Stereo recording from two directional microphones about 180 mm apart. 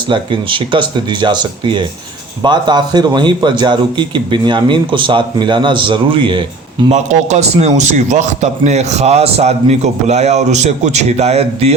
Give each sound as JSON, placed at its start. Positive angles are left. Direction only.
{"t": 0.1, "sound": "a man's voice", "side_deg": -30}
{"t": 6.9, "sound": "a man's voice", "side_deg": -40}